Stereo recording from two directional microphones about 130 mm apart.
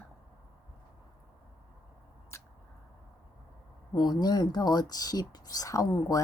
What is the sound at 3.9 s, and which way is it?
Speech, 35° left (ahead or behind).